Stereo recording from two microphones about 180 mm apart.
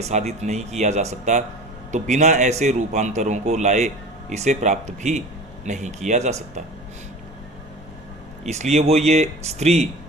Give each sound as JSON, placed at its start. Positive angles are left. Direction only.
{"t": 0.1, "sound": "a man's voice", "side_deg": -40}
{"t": 8.7, "sound": "a man's voice", "side_deg": -35}